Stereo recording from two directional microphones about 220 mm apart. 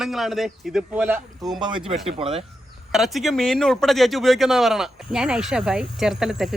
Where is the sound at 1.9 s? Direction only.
25° right (ahead or behind).